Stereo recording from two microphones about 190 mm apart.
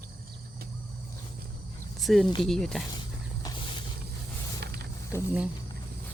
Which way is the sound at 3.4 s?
25° left (ahead or behind).